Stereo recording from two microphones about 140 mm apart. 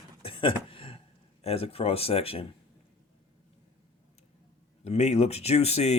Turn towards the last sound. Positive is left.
turn(degrees=50)  # may be behind; listen again after turning